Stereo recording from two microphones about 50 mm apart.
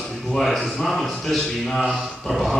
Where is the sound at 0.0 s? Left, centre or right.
Centre.